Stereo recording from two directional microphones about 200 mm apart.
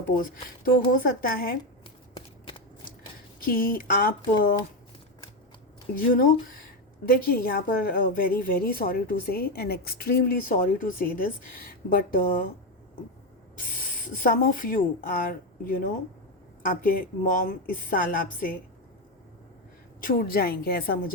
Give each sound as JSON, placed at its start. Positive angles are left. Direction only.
{"t": 0.1, "sound": "a woman's voice", "side_deg": 45}
{"t": 3.4, "sound": "a woman's voice", "side_deg": 45}
{"t": 5.9, "sound": "a woman's voice", "side_deg": 45}
{"t": 13.6, "sound": "a woman's voice", "side_deg": 45}
{"t": 20.0, "sound": "a woman's voice", "side_deg": 45}